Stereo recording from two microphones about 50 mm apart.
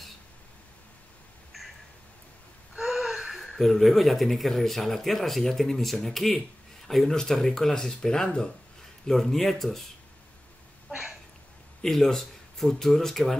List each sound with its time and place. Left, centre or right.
2.8 s speech: centre
11.8 s speech: centre